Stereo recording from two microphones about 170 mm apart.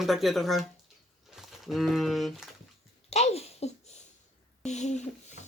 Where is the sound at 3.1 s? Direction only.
40° left (ahead or behind).